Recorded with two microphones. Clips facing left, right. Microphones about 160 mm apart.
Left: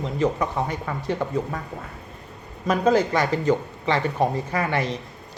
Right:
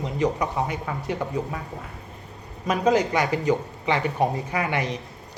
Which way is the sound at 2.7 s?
15° right (ahead or behind).